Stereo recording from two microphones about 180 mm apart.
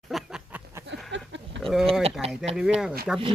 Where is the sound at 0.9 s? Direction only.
85° right.